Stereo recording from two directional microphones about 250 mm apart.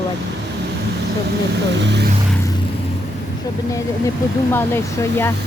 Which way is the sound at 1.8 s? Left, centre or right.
Right.